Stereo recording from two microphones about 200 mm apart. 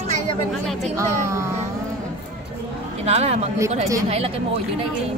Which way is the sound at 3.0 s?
30° right (ahead or behind).